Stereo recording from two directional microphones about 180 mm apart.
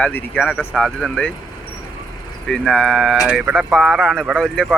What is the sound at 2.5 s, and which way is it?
Speech, centre (ahead or behind).